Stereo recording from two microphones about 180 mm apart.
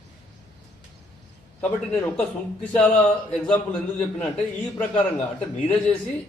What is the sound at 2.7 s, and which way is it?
Speech, 5° left (ahead or behind).